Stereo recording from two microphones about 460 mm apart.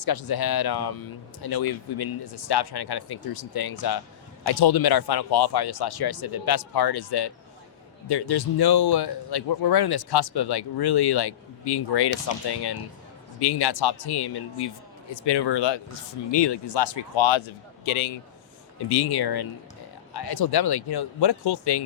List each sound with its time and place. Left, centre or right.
0.0 s speech: left
18.9 s speech: left